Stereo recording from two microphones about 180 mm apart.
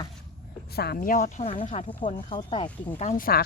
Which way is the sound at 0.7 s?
60° left (ahead or behind).